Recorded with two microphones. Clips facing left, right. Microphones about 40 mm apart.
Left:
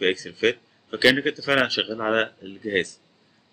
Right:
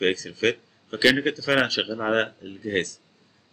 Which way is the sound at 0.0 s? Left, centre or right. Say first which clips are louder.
Left 1 dB; centre.